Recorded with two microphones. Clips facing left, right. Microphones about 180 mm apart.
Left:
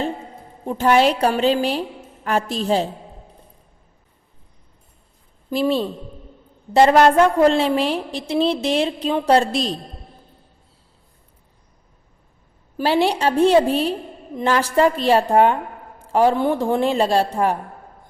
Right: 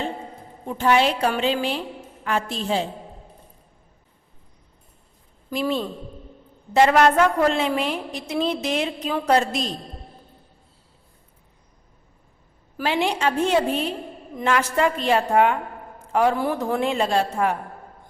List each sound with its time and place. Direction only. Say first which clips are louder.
0.7 s a woman's voice: left 3 dB; 40° left (ahead or behind)
5.5 s a woman's voice: left 5 dB; 30° left (ahead or behind)
12.7 s a woman's voice: left 5 dB; 35° left (ahead or behind)